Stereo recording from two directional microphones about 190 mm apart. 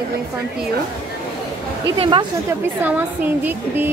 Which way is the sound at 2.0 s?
25° right (ahead or behind).